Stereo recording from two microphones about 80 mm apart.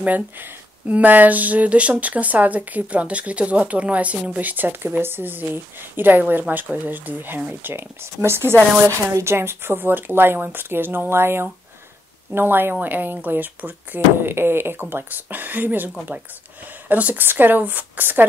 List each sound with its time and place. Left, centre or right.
0.0 s speech: right
7.7 s speech: right